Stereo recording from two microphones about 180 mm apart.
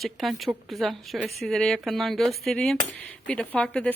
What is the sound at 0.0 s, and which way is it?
Speech, centre (ahead or behind).